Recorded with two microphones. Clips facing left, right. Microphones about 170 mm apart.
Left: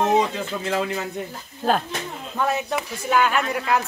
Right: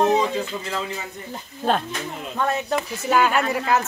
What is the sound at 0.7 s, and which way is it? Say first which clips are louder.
Speech: left 5 dB; 65° left (ahead or behind).